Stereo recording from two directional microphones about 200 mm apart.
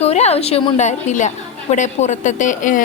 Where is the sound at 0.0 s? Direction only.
30° left (ahead or behind).